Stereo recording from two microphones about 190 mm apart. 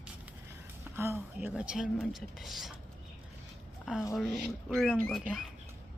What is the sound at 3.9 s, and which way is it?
Speech, 5° right (ahead or behind).